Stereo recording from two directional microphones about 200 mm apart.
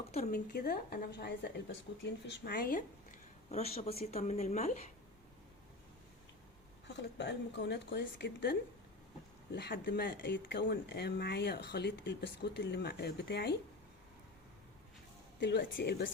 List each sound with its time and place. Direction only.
0.3 s a woman's voice: 50° left (ahead or behind)
3.5 s a woman's voice: 30° left (ahead or behind)
6.8 s speech: 60° left (ahead or behind)
15.4 s speech: 55° left (ahead or behind)